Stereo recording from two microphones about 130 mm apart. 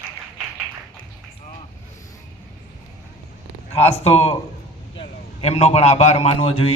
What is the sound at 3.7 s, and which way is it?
A man's voice, 50° left (ahead or behind).